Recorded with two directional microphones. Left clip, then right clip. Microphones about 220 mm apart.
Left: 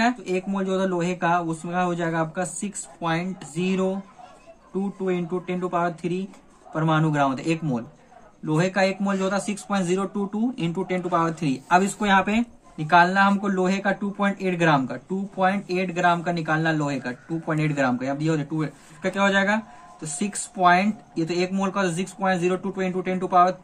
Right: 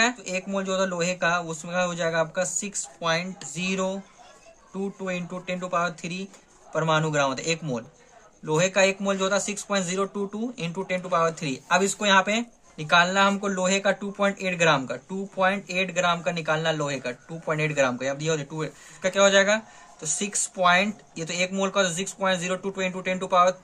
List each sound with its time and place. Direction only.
0.0 s speech: 45° right (ahead or behind)
5.0 s speech: 40° right (ahead or behind)